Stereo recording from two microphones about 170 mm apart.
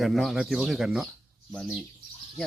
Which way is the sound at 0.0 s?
Centre (ahead or behind).